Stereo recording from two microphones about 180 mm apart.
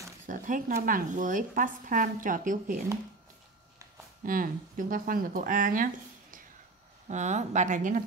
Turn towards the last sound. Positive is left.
turn(degrees=-45)  # may be behind; listen again after turning